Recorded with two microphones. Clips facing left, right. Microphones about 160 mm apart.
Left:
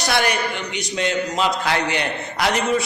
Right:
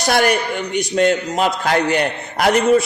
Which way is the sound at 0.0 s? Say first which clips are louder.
Right 5 dB; 50° right (ahead or behind).